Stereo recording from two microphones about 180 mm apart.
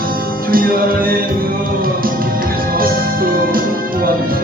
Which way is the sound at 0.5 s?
55° right (ahead or behind).